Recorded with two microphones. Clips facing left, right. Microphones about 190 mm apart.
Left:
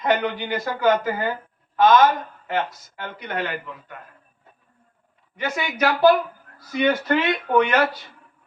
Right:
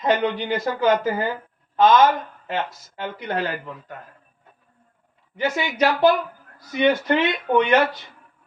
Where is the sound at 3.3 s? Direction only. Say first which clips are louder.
Right 2 dB; 35° right (ahead or behind).